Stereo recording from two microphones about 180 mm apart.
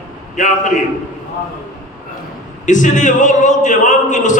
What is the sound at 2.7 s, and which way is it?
A man's voice, 45° left (ahead or behind).